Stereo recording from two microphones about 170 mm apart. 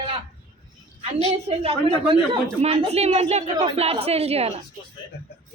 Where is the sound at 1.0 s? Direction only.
35° right (ahead or behind).